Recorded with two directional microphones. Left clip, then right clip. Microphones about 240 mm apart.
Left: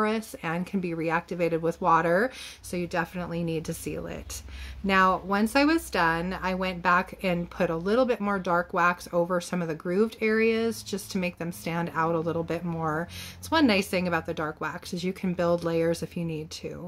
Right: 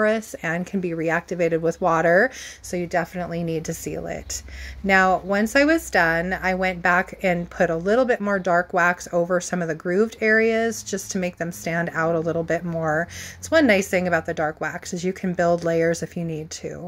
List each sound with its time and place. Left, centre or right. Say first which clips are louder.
0.0 s speech: right 7 dB; centre
16.2 s speech: right 4 dB; right